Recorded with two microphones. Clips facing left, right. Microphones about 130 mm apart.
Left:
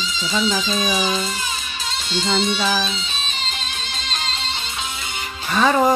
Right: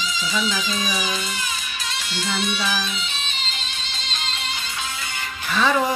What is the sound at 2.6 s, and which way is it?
Music, 35° left (ahead or behind).